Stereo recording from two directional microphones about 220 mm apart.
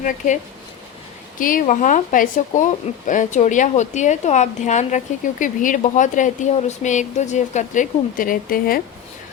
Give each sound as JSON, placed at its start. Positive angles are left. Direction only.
{"t": 1.4, "sound": "a woman's voice", "side_deg": 40}